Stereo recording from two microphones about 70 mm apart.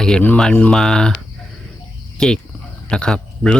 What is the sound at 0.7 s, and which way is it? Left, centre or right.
Speech, centre.